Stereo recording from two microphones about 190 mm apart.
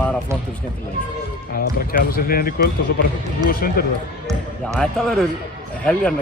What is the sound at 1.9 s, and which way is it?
Speech, 50° left (ahead or behind).